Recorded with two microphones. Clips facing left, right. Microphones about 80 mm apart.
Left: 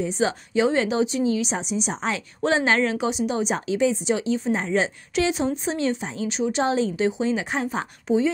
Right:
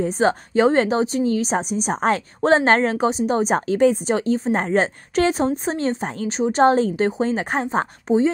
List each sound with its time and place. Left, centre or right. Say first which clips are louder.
0.0 s a woman's voice: right 5 dB; right